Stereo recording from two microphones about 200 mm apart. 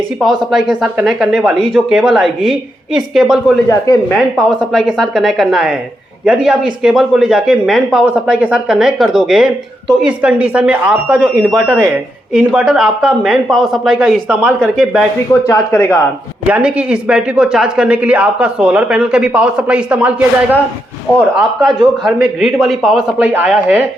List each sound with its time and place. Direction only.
0.2 s speech: centre (ahead or behind)
3.7 s speech: 15° left (ahead or behind)
4.4 s speech: 5° left (ahead or behind)
15.3 s speech: 10° left (ahead or behind)
16.5 s speech: 5° right (ahead or behind)